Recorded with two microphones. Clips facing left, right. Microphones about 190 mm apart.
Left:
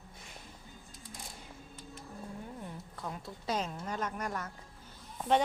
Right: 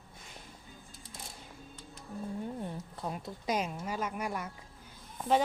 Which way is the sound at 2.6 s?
25° right (ahead or behind).